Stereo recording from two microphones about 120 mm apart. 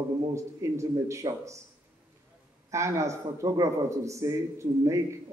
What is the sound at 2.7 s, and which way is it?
A man's voice, 25° right (ahead or behind).